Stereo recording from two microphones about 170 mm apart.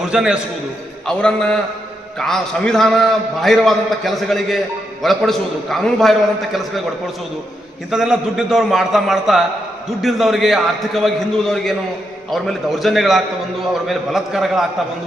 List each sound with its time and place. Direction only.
0.0 s a man's voice: 5° right (ahead or behind)
7.9 s a man's voice: 5° right (ahead or behind)